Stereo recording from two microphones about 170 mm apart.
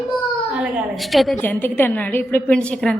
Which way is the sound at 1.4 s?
10° left (ahead or behind).